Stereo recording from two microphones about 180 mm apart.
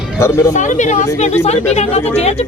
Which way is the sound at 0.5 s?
45° left (ahead or behind).